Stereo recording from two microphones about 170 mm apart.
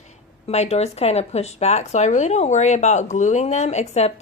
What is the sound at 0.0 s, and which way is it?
Speech, 40° left (ahead or behind).